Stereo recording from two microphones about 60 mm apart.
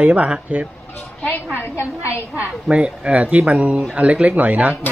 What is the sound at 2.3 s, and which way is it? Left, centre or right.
Speech, centre.